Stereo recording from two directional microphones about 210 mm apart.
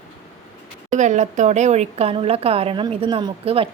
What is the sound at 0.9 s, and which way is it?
Speech, 35° right (ahead or behind).